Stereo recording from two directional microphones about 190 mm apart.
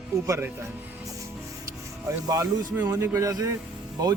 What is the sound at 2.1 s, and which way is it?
Speech, 15° right (ahead or behind).